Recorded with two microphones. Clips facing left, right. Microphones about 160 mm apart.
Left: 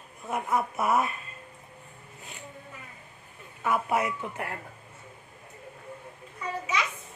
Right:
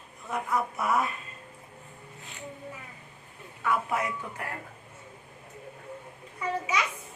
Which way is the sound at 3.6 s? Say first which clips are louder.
Left 2 dB; 20° left (ahead or behind).